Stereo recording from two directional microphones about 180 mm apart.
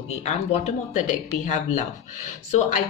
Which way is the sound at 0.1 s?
40° left (ahead or behind).